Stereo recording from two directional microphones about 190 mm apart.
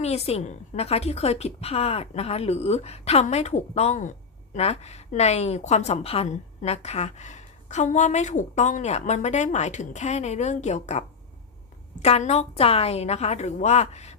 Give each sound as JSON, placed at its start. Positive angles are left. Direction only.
{"t": 0.0, "sound": "a woman's voice", "side_deg": 35}